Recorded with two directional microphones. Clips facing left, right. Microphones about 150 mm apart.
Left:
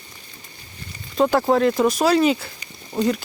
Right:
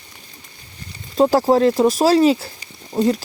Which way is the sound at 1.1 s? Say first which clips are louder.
Right 3 dB; 35° right (ahead or behind).